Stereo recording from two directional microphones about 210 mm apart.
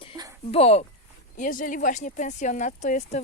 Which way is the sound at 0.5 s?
30° left (ahead or behind).